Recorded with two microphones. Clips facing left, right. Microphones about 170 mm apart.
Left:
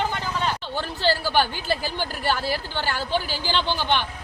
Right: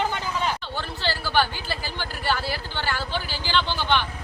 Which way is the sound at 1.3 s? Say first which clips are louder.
Left 2 dB; 15° left (ahead or behind).